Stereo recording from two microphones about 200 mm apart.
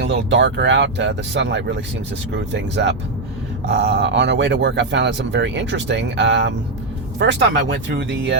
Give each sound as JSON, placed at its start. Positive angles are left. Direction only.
{"t": 0.0, "sound": "speech", "side_deg": -60}